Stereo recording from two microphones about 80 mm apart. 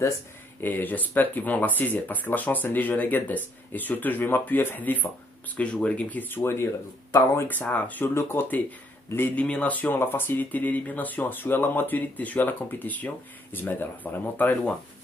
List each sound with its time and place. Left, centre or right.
0.6 s speech: left
7.4 s speech: left